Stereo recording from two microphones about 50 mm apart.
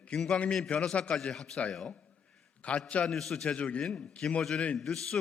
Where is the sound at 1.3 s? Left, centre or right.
Centre.